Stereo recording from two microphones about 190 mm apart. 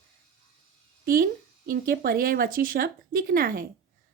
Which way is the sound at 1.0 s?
45° right (ahead or behind).